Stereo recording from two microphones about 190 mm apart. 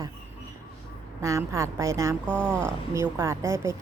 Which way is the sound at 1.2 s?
15° right (ahead or behind).